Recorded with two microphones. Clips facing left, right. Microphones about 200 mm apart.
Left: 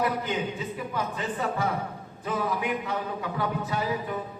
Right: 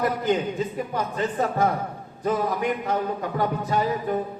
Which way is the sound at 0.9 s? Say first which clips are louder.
Right 6 dB; 40° right (ahead or behind).